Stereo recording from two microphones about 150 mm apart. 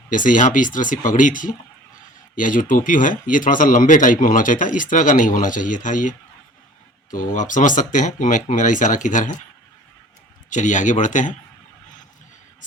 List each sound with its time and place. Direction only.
0.1 s speech: 60° left (ahead or behind)
10.5 s speech: 55° left (ahead or behind)